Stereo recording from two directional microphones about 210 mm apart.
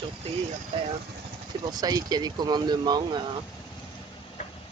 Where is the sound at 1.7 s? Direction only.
20° right (ahead or behind).